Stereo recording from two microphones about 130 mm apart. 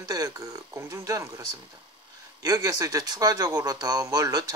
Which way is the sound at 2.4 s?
25° right (ahead or behind).